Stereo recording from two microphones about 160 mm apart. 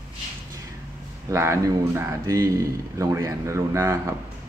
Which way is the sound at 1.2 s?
20° right (ahead or behind).